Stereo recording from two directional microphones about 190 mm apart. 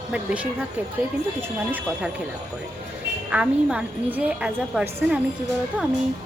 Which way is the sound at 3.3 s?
5° right (ahead or behind).